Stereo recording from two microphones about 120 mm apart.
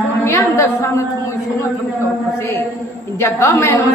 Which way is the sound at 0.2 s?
20° left (ahead or behind).